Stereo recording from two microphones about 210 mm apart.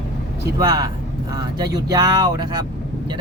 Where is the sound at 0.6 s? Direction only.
15° right (ahead or behind).